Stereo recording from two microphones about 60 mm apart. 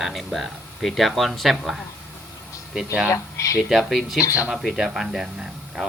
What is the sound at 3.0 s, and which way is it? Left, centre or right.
Speech, left.